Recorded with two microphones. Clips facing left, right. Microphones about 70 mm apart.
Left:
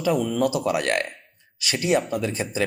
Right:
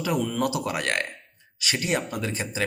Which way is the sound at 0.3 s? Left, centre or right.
Right.